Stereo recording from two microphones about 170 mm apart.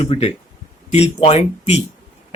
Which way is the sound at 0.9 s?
40° left (ahead or behind).